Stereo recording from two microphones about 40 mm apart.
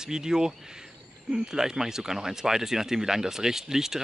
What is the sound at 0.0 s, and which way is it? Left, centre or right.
Speech, centre.